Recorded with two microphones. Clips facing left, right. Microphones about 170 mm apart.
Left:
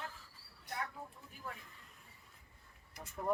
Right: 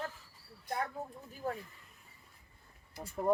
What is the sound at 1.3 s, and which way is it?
Speech, 40° right (ahead or behind).